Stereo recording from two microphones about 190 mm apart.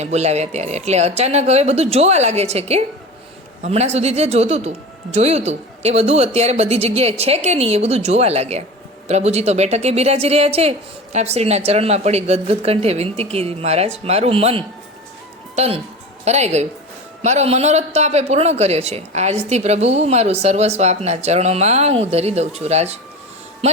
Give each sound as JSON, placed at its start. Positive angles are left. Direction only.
{"t": 0.0, "sound": "a man's voice", "side_deg": -35}